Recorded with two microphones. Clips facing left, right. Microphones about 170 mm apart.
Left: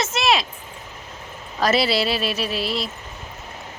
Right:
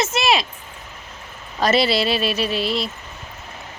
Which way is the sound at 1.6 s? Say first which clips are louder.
Right 2 dB; centre (ahead or behind).